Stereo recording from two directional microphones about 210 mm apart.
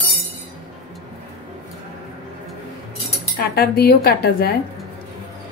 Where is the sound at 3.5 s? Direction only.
50° left (ahead or behind).